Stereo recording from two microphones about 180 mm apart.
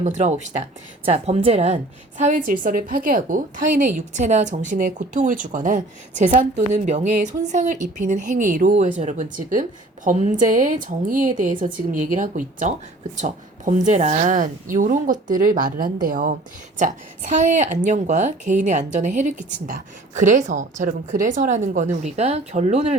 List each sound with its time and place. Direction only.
0.0 s a woman's voice: 40° right (ahead or behind)